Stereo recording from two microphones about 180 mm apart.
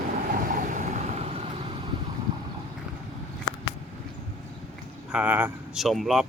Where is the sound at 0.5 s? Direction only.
45° right (ahead or behind).